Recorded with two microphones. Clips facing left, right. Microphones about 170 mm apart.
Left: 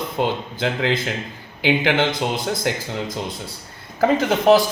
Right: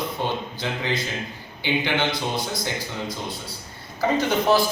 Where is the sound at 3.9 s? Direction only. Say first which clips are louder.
Left 4 dB; 75° left (ahead or behind).